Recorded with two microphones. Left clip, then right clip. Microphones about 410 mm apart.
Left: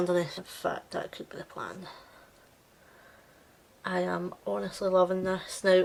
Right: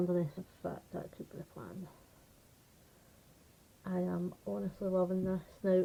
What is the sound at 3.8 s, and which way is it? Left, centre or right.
Speech, centre.